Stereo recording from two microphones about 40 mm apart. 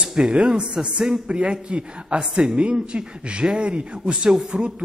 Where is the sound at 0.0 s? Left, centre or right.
Centre.